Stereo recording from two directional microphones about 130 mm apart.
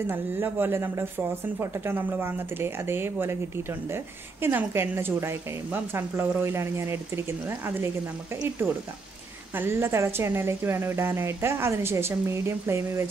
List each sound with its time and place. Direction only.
0.0 s a woman's voice: 15° right (ahead or behind)